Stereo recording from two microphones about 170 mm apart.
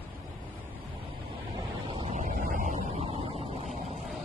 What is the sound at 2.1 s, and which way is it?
Vehicle, 50° right (ahead or behind).